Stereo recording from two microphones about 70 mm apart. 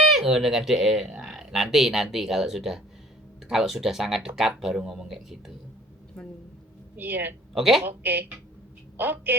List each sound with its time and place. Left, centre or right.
0.0 s speech: centre
6.9 s a woman's voice: right
7.5 s speech: centre
7.9 s a woman's voice: right